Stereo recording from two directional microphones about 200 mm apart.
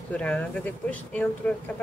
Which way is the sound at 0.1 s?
5° left (ahead or behind).